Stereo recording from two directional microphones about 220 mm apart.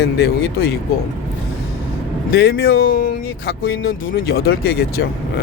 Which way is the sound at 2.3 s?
45° left (ahead or behind).